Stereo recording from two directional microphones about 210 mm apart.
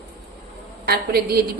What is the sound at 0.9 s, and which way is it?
Speech, 45° right (ahead or behind).